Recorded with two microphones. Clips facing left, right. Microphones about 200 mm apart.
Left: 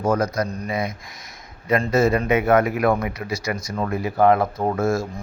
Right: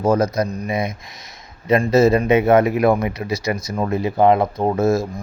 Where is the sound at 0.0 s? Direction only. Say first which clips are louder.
Right 4 dB; 25° right (ahead or behind).